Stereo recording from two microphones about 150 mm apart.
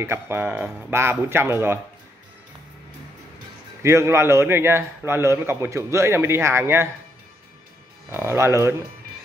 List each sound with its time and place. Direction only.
0.0 s a man's voice: 15° right (ahead or behind)
3.8 s a man's voice: 20° right (ahead or behind)
8.1 s a man's voice: 15° right (ahead or behind)